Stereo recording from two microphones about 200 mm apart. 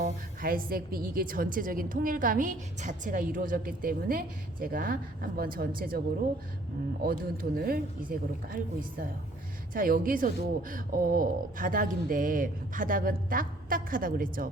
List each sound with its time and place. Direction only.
0.0 s a woman's voice: 45° right (ahead or behind)
7.0 s a woman's voice: 50° right (ahead or behind)
9.7 s a woman's voice: 45° right (ahead or behind)